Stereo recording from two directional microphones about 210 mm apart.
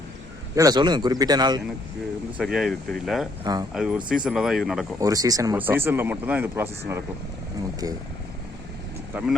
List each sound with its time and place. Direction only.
0.5 s a man's voice: 15° right (ahead or behind)
2.4 s speech: centre (ahead or behind)
3.4 s speech: 20° right (ahead or behind)
3.8 s speech: 5° right (ahead or behind)
4.9 s speech: 15° right (ahead or behind)